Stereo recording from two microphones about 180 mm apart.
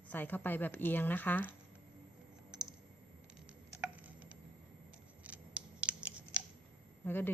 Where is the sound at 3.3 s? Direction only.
5° right (ahead or behind).